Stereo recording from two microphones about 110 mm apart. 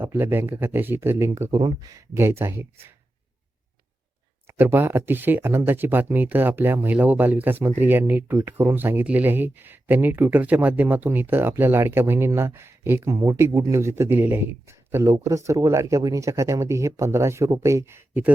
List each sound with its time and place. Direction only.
0.0 s speech: 20° right (ahead or behind)
1.5 s speech: 40° right (ahead or behind); by 2.8 s 20° right (ahead or behind)
4.4 s speech: 20° right (ahead or behind)